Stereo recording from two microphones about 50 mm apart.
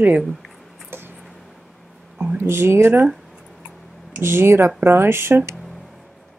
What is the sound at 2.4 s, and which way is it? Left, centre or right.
Speech, right.